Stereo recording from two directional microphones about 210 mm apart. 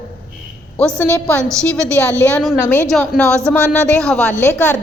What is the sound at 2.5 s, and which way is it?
Speech, 15° left (ahead or behind).